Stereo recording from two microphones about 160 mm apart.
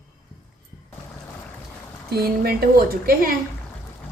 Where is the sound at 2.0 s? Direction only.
75° right (ahead or behind).